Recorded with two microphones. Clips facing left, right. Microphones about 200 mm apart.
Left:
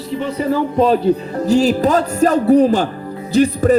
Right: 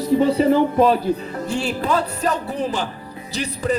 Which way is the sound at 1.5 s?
40° left (ahead or behind).